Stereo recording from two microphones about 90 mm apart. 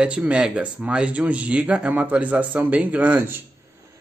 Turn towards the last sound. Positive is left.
turn(degrees=-15)  # may be behind; listen again after turning